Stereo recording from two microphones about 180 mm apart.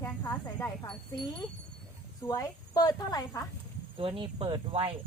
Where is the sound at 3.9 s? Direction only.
30° right (ahead or behind).